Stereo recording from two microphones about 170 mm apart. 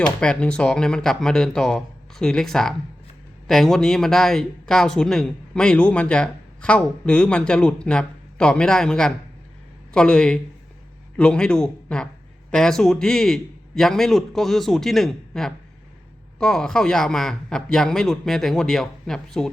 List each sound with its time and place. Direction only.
0.2 s speech: 5° left (ahead or behind)